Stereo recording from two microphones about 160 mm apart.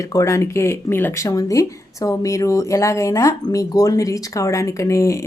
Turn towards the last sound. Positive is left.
turn(degrees=20)  # may be behind; listen again after turning